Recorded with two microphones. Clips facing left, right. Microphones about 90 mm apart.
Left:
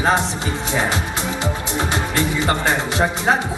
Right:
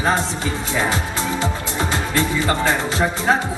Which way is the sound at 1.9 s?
20° left (ahead or behind).